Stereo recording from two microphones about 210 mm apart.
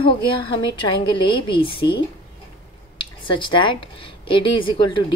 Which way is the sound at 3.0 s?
25° left (ahead or behind).